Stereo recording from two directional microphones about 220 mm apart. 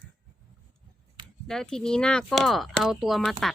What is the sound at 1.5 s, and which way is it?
Speech, centre (ahead or behind).